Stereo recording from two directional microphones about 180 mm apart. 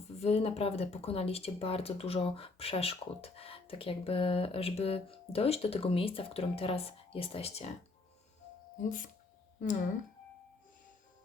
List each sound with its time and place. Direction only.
0.2 s speech: 35° left (ahead or behind)
8.8 s speech: 45° left (ahead or behind)